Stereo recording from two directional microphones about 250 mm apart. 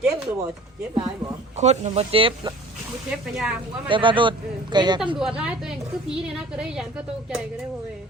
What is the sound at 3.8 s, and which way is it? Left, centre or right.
Speech, centre.